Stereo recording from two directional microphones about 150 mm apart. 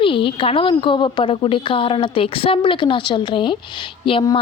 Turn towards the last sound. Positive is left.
turn(degrees=35)  # may be behind; listen again after turning